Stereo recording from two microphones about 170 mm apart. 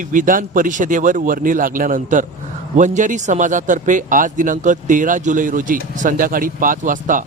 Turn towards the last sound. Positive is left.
turn(degrees=-50)  # may be behind; listen again after turning